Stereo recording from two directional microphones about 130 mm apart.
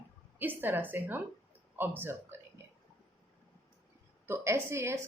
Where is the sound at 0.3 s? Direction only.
15° right (ahead or behind).